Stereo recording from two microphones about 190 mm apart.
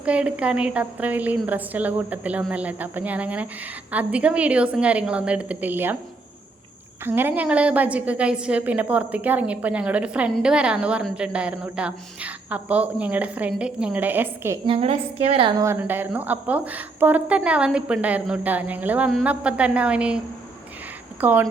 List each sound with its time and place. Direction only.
0.0 s a woman's voice: 5° right (ahead or behind)
7.0 s a woman's voice: 10° right (ahead or behind)
14.7 s a woman's voice: 30° right (ahead or behind)
15.6 s a woman's voice: 10° right (ahead or behind)
21.2 s speech: 10° right (ahead or behind)